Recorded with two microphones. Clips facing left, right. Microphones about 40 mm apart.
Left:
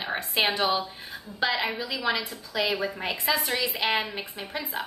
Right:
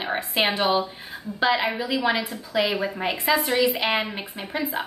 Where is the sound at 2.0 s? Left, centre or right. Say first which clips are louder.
Right 4 dB; right.